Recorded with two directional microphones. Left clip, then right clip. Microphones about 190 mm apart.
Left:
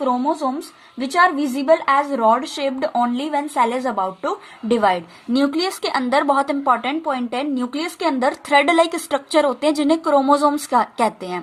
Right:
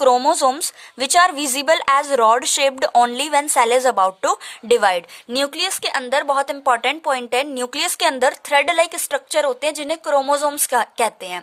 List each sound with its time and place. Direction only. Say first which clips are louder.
0.0 s a woman's voice: right 6 dB; 60° right (ahead or behind); by 8.3 s 40° right (ahead or behind)
8.3 s a woman's voice: left 1 dB; 25° right (ahead or behind)